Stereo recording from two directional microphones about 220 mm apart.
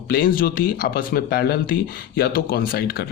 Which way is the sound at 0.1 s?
40° left (ahead or behind).